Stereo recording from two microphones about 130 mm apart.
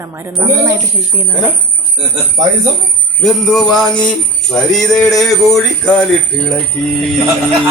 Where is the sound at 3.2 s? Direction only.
5° left (ahead or behind).